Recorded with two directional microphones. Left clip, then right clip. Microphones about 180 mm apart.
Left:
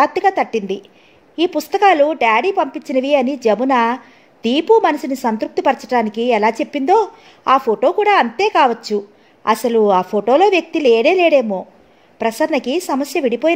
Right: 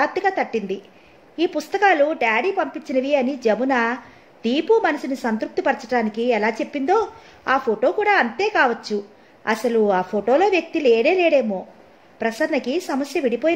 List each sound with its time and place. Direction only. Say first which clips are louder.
0.0 s a woman's voice: left 6 dB; 40° left (ahead or behind)